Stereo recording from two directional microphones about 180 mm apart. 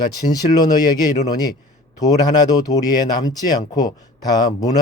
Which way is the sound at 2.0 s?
20° left (ahead or behind).